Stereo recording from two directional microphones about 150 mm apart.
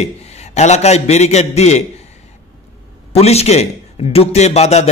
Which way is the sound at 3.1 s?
45° left (ahead or behind).